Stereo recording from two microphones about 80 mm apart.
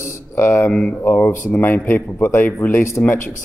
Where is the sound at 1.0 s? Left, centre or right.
Left.